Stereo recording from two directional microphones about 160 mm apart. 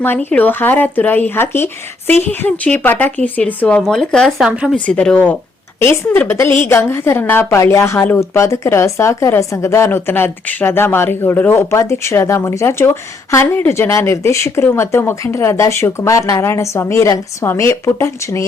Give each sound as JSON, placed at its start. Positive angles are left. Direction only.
{"t": 0.0, "sound": "a woman's voice", "side_deg": 10}
{"t": 4.9, "sound": "a woman's voice", "side_deg": 5}